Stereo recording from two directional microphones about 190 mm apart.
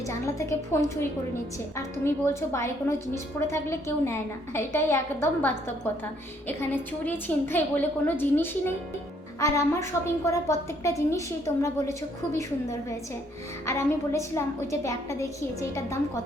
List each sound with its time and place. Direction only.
0.1 s a woman's voice: 15° left (ahead or behind)
2.0 s a woman's voice: 15° left (ahead or behind)
13.7 s a woman's voice: 15° left (ahead or behind)